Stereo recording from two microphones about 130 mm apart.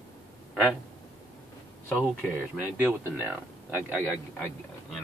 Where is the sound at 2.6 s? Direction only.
15° right (ahead or behind).